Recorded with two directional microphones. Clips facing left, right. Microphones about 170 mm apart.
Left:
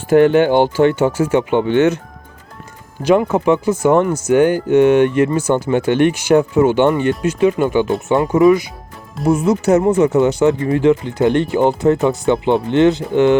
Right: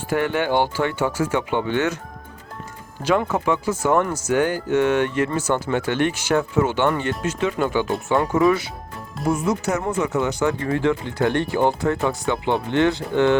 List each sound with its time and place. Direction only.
0.1 s speech: 25° left (ahead or behind)
3.0 s speech: 20° left (ahead or behind)